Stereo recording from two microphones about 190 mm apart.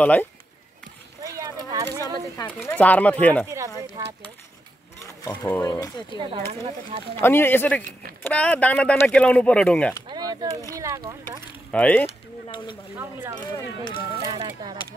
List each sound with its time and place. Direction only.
0.0 s speech: 10° left (ahead or behind)
1.2 s clip-clop: 15° right (ahead or behind)
2.3 s speech: 10° left (ahead or behind)
3.4 s a sound: 15° right (ahead or behind)
4.0 s speech: 15° right (ahead or behind)
5.2 s speech: 20° left (ahead or behind)
6.1 s speech: 25° right (ahead or behind)
7.2 s speech: 10° left (ahead or behind)
10.0 s a sound: 25° right (ahead or behind)
10.7 s speech: 20° right (ahead or behind)
11.7 s speech: 5° left (ahead or behind)
12.4 s speech: 25° left (ahead or behind)
12.9 s speech: 10° right (ahead or behind)